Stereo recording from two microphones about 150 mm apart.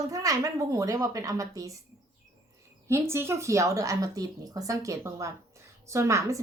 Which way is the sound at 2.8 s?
15° right (ahead or behind).